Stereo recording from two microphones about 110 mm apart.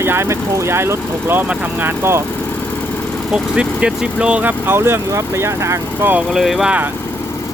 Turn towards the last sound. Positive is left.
turn(degrees=-5)  # may be behind; listen again after turning